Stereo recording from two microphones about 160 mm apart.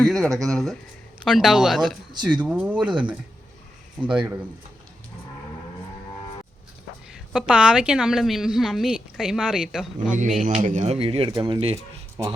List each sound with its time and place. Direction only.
0.0 s a woman's voice: centre (ahead or behind)
4.1 s speech: 5° right (ahead or behind)
7.3 s a woman's voice: 5° right (ahead or behind)
10.1 s a man's voice: 50° right (ahead or behind); by 12.3 s 30° right (ahead or behind)